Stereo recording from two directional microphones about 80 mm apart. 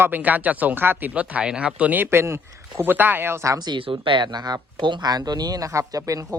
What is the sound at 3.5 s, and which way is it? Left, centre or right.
Speech, right.